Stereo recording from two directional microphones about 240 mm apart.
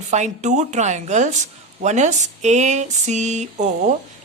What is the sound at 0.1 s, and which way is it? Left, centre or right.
Speech, right.